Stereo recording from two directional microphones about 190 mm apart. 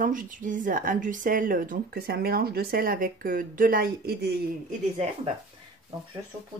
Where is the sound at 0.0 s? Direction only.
45° right (ahead or behind).